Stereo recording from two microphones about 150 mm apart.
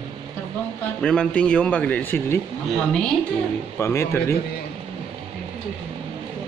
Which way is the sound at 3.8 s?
20° left (ahead or behind).